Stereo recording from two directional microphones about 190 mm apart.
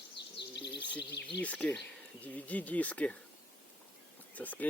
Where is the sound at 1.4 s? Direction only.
5° left (ahead or behind).